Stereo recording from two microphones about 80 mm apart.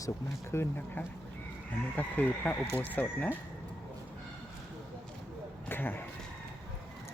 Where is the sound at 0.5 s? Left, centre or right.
Left.